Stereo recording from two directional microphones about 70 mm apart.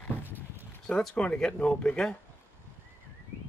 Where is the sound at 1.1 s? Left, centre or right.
Centre.